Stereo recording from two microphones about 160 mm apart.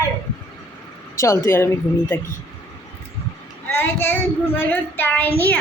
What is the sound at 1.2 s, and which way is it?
A woman's voice, 20° left (ahead or behind).